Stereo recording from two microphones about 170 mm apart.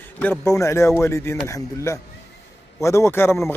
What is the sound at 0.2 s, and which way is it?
A man's voice, 10° left (ahead or behind).